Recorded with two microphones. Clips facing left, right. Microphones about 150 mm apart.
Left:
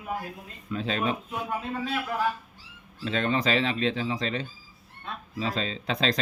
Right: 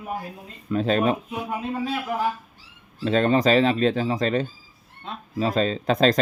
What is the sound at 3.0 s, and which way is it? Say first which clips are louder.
Speech: right 7 dB; 40° right (ahead or behind).